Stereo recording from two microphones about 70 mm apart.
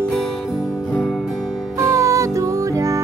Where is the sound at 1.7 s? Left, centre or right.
Right.